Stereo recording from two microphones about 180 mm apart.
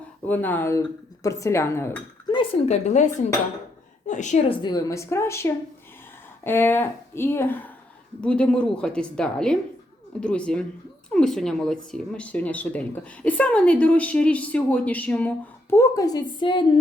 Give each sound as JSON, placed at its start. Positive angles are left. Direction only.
{"t": 0.3, "sound": "speech", "side_deg": 10}
{"t": 2.3, "sound": "a woman's voice", "side_deg": 30}